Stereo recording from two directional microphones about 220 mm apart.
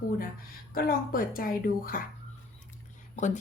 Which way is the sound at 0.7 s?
40° left (ahead or behind).